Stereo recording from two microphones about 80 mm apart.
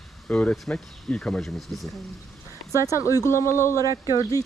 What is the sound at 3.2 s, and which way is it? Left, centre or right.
Speech, left.